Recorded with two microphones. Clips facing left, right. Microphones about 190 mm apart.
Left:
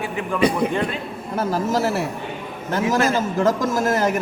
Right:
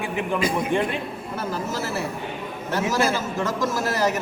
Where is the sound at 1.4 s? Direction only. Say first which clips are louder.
Left 8 dB; 40° left (ahead or behind).